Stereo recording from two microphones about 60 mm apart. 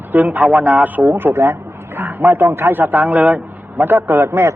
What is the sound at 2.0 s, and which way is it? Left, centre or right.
Speech, right.